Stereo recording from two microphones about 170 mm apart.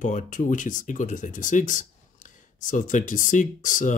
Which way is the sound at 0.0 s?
50° left (ahead or behind).